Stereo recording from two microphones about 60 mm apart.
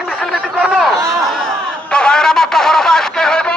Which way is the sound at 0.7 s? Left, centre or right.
Centre.